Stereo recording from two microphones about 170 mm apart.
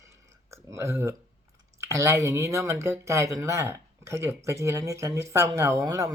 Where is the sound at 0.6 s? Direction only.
15° right (ahead or behind).